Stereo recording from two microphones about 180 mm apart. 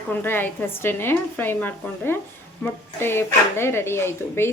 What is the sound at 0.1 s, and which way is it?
Speech, 10° left (ahead or behind).